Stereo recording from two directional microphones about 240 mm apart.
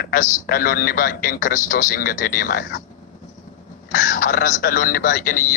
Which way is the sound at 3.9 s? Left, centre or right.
Left.